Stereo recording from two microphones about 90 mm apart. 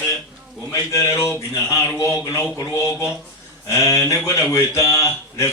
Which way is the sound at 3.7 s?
35° left (ahead or behind).